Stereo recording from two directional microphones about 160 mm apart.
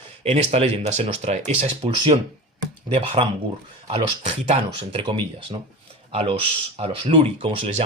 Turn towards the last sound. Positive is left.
turn(degrees=-35)  # may be behind; listen again after turning